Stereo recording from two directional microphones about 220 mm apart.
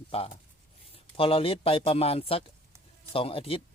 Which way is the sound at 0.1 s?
25° left (ahead or behind).